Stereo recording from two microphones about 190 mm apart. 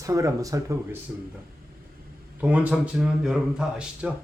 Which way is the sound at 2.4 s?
10° right (ahead or behind).